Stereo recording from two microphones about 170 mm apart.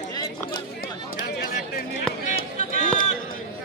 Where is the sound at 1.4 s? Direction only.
60° left (ahead or behind).